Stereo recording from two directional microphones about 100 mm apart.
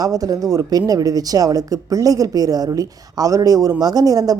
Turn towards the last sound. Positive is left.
turn(degrees=-40)  # may be behind; listen again after turning